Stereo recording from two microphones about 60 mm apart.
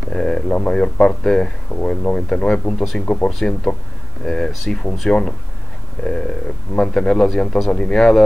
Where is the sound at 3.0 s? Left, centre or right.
Left.